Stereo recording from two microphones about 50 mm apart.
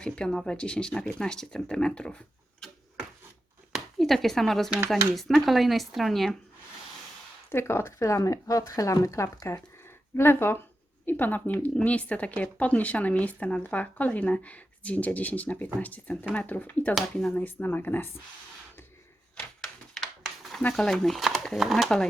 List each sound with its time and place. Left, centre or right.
0.0 s speech: centre
3.9 s speech: centre
7.5 s speech: left
10.2 s speech: left
11.0 s speech: left
19.4 s typewriter: centre
20.2 s a sound: centre
20.7 s speech: centre